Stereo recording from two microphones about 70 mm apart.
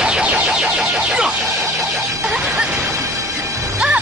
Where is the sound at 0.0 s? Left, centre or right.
Centre.